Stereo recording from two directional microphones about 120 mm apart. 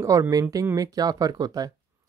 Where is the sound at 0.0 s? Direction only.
25° right (ahead or behind).